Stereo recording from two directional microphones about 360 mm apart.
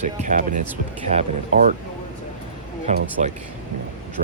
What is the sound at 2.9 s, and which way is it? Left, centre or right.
Speech, centre.